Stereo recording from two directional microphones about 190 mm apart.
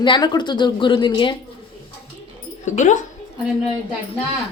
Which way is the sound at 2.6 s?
40° left (ahead or behind).